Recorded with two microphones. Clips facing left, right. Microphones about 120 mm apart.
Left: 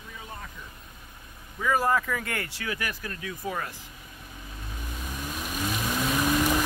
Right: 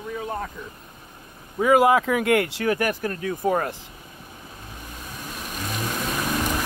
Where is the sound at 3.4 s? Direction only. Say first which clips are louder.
Right 10 dB; 55° right (ahead or behind).